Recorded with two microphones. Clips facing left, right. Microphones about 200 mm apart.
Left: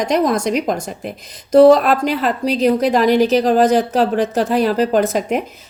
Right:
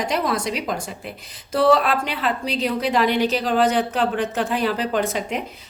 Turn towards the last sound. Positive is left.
turn(degrees=45)  # may be behind; listen again after turning